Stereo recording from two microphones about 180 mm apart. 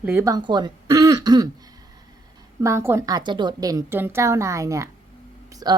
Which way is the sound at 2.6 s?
15° right (ahead or behind).